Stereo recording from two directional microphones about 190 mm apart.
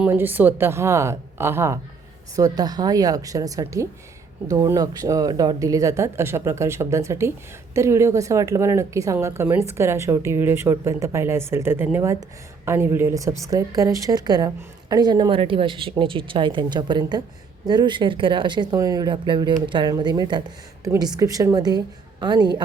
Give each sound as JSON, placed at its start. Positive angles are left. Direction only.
{"t": 0.0, "sound": "a woman's voice", "side_deg": -10}